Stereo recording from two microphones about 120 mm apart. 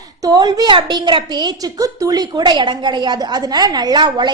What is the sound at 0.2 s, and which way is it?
A woman's voice, 35° right (ahead or behind).